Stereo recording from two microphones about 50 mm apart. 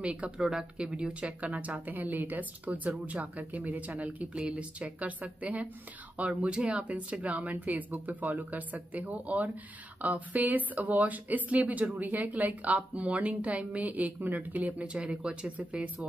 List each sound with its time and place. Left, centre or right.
0.0 s speech: right
0.4 s speech: centre; by 15.9 s right